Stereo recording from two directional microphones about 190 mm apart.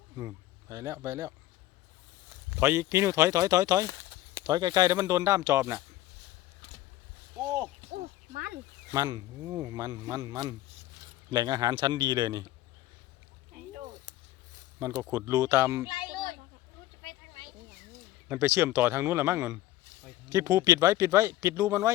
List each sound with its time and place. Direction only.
0.2 s speech: 15° right (ahead or behind)
2.6 s speech: 15° right (ahead or behind)
8.3 s a sound: 55° right (ahead or behind)
8.9 s speech: 20° right (ahead or behind)
14.8 s speech: 15° right (ahead or behind)
15.9 s children playing: 25° left (ahead or behind)
18.3 s speech: 10° right (ahead or behind)